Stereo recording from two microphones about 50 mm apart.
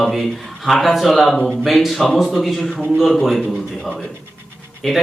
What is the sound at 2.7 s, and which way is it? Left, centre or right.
Speech, centre.